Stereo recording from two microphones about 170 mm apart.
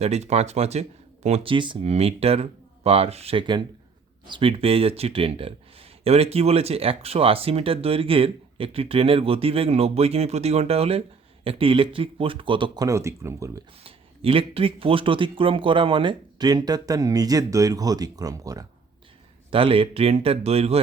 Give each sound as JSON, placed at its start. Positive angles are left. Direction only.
{"t": 0.0, "sound": "speech", "side_deg": -40}
{"t": 13.8, "sound": "speech", "side_deg": -35}
{"t": 19.5, "sound": "speech", "side_deg": -35}